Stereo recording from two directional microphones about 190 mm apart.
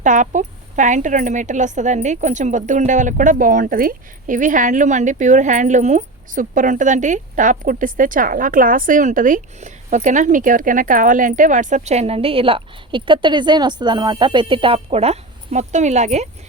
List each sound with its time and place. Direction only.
0.0 s speech: 40° right (ahead or behind)